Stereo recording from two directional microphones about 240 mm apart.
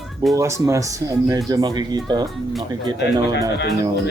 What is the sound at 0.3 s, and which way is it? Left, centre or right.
Speech, centre.